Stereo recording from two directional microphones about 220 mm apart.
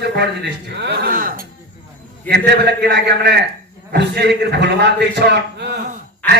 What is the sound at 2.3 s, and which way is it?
A man's voice, 50° right (ahead or behind).